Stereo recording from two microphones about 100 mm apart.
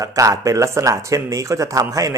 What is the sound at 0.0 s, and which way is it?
Speech, 35° right (ahead or behind).